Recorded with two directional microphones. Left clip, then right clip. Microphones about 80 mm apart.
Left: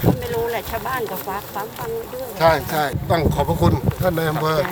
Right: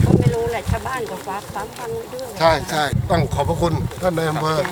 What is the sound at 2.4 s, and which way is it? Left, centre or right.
Speech, centre.